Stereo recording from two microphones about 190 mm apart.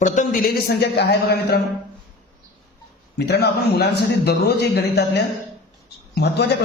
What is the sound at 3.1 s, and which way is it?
A man's voice, 60° left (ahead or behind).